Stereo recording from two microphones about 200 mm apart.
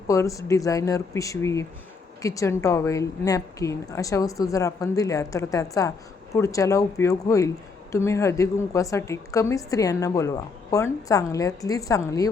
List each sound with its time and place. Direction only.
0.1 s a woman's voice: 15° left (ahead or behind)